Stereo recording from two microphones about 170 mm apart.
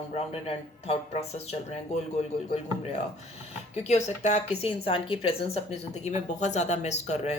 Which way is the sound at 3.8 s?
40° left (ahead or behind).